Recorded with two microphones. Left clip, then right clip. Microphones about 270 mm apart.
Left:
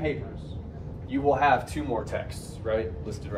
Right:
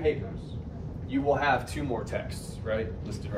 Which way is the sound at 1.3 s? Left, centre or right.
Left.